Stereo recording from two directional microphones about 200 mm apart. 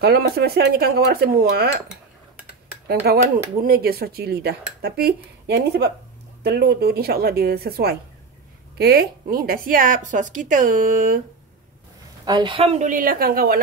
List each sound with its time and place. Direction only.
0.0 s speech: 55° right (ahead or behind)
2.9 s a woman's voice: 50° right (ahead or behind)
12.3 s a woman's voice: 25° right (ahead or behind); by 13.6 s 50° right (ahead or behind)